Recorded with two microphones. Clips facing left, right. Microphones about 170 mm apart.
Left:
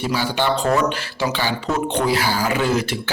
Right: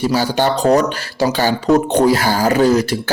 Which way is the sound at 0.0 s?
40° right (ahead or behind).